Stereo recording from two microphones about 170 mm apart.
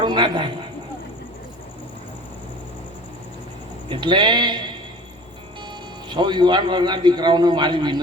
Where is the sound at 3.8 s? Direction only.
30° right (ahead or behind).